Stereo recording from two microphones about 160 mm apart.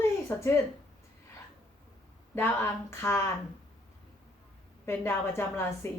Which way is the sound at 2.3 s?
15° left (ahead or behind).